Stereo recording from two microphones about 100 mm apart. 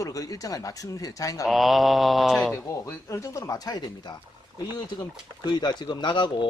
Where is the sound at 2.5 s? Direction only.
25° left (ahead or behind).